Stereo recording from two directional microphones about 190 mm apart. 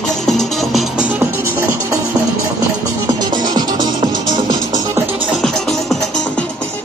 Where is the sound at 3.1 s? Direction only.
20° right (ahead or behind).